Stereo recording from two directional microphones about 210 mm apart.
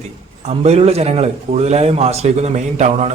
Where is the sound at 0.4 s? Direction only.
30° right (ahead or behind).